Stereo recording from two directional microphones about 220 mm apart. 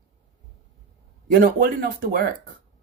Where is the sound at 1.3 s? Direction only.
40° right (ahead or behind).